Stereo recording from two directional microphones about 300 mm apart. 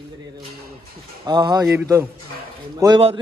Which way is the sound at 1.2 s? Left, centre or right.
Centre.